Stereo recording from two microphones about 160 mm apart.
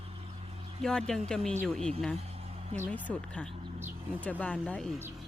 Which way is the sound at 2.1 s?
40° right (ahead or behind).